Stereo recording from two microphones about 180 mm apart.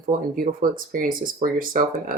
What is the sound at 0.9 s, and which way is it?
Speech, 50° right (ahead or behind).